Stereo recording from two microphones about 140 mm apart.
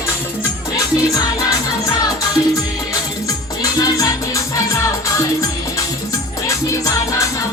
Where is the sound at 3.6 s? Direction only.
25° left (ahead or behind).